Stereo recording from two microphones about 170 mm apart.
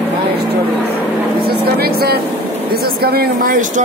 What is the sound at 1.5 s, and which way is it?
Vehicle, 65° right (ahead or behind).